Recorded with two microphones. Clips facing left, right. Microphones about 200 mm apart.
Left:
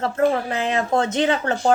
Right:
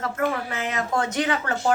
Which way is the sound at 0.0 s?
30° left (ahead or behind).